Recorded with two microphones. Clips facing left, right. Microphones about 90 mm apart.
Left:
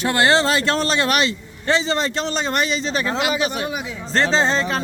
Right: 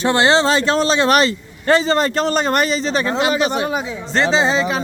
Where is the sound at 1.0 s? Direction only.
40° right (ahead or behind).